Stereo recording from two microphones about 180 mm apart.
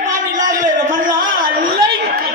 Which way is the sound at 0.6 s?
50° right (ahead or behind).